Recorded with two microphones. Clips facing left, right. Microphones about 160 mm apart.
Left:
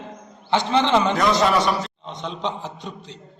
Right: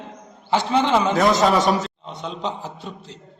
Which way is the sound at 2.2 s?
5° right (ahead or behind).